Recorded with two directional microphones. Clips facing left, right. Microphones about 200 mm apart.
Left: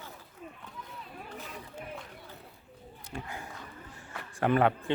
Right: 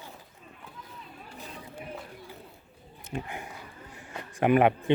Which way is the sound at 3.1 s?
20° right (ahead or behind).